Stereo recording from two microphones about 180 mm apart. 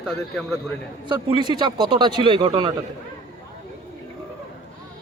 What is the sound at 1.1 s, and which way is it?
Speech, 25° right (ahead or behind).